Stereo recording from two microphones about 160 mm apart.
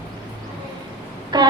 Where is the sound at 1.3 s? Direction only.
25° right (ahead or behind).